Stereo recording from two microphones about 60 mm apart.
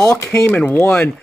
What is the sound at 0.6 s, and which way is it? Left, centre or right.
Speech, left.